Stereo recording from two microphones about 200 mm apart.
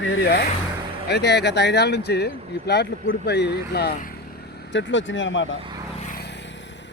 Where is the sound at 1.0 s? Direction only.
55° left (ahead or behind).